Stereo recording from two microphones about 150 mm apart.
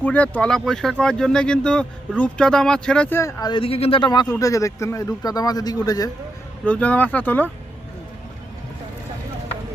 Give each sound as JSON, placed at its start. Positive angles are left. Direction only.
{"t": 0.0, "sound": "speech", "side_deg": 10}
{"t": 3.2, "sound": "speech", "side_deg": 20}
{"t": 3.5, "sound": "speech", "side_deg": 40}
{"t": 6.7, "sound": "speech", "side_deg": 10}